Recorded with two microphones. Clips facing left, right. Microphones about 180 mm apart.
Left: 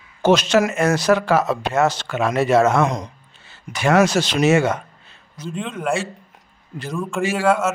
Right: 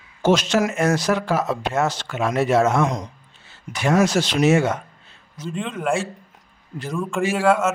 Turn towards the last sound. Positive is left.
turn(degrees=0)  # may be behind; listen again after turning